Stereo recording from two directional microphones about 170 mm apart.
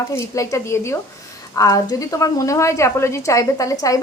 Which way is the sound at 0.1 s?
15° left (ahead or behind).